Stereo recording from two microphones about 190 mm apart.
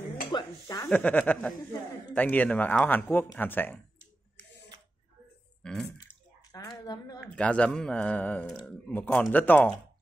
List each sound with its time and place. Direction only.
0.3 s speech: 20° left (ahead or behind)
0.8 s a man's voice: 5° left (ahead or behind)
5.6 s burping: 5° left (ahead or behind)
6.8 s a sound: 20° left (ahead or behind)
7.2 s a man's voice: 5° left (ahead or behind)